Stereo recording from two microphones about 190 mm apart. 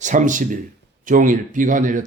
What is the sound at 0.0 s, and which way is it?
Speech, 40° right (ahead or behind).